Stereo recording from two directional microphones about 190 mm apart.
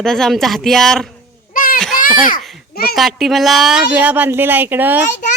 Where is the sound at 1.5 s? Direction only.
45° left (ahead or behind).